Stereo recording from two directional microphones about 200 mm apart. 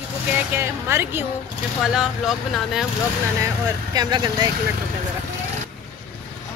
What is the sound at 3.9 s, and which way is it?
Speech, 20° right (ahead or behind).